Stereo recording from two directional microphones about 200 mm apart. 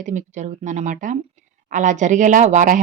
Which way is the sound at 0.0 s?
40° right (ahead or behind).